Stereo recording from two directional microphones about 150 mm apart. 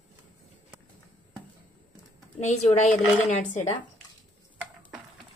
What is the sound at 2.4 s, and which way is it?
Speech, 50° left (ahead or behind).